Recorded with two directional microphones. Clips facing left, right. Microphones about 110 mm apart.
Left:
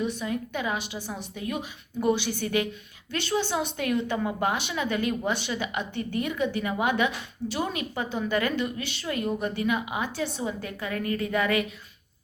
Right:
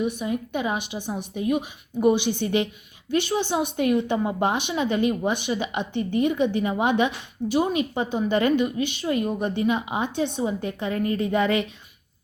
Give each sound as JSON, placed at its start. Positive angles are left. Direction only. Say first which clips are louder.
{"t": 0.0, "sound": "speech", "louder": "right 3 dB", "side_deg": -15}